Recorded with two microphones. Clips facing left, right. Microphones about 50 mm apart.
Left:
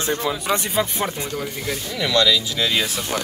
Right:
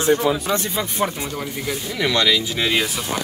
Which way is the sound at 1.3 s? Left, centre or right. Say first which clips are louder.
Even; centre.